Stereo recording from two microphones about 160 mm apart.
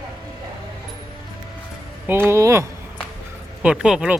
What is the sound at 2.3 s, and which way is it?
Speech, 20° right (ahead or behind).